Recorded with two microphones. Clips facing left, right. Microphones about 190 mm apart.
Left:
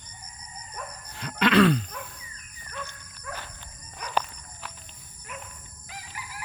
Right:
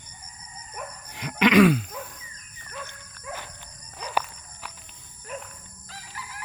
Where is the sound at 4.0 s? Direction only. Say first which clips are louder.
Even; 10° right (ahead or behind).